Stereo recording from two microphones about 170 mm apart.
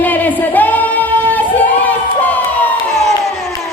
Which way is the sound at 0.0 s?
10° left (ahead or behind).